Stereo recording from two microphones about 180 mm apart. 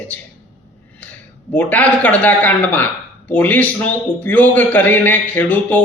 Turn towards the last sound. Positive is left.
turn(degrees=10)  # may be behind; listen again after turning